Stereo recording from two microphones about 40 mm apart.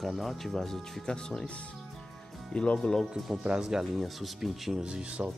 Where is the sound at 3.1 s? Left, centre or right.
Centre.